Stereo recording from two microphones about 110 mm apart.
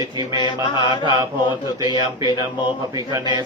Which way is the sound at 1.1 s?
35° right (ahead or behind).